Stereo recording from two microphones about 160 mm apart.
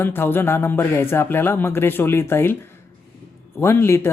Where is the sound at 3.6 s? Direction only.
15° left (ahead or behind).